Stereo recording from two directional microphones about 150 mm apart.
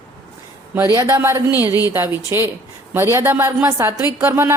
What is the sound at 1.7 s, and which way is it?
Speech, 25° left (ahead or behind).